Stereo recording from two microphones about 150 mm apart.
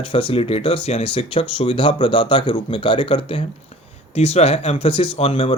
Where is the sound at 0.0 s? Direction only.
35° left (ahead or behind).